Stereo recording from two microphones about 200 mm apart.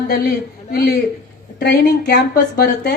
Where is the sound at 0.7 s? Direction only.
50° left (ahead or behind).